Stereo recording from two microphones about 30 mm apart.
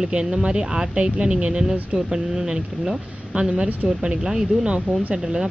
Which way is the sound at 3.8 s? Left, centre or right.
Right.